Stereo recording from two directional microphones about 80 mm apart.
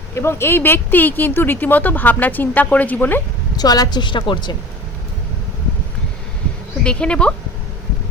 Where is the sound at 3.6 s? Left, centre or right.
Left.